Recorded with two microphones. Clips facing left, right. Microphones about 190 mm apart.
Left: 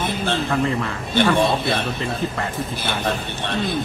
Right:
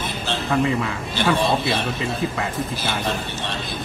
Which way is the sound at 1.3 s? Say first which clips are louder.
Left 1 dB; 55° left (ahead or behind).